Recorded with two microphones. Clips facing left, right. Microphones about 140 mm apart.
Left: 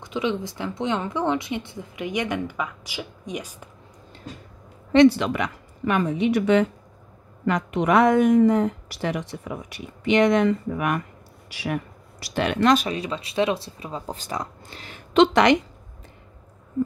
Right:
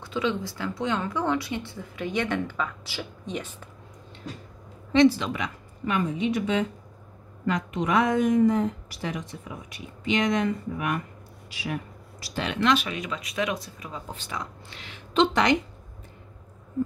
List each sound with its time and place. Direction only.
0.0 s speech: 15° left (ahead or behind)
4.9 s a woman's voice: 65° left (ahead or behind)
12.6 s speech: 40° left (ahead or behind)
15.1 s a woman's voice: 70° left (ahead or behind)